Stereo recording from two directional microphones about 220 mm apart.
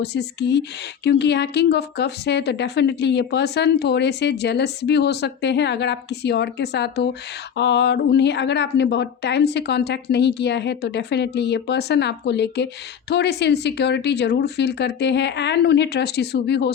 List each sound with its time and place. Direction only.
0.0 s a woman's voice: 50° left (ahead or behind)